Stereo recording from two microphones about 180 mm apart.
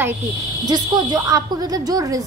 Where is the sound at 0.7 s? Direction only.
25° right (ahead or behind).